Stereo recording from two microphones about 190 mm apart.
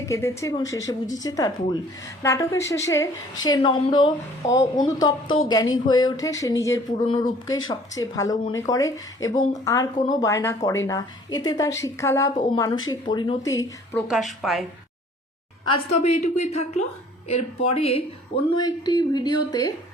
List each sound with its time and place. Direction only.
0.0 s a woman's voice: 15° left (ahead or behind)
14.1 s a woman's voice: centre (ahead or behind)
15.9 s speech: 35° left (ahead or behind)
18.6 s a woman's voice: 20° left (ahead or behind)